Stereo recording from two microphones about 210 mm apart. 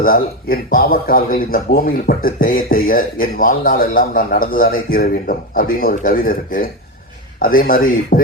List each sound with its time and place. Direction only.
0.0 s a man's voice: 45° left (ahead or behind)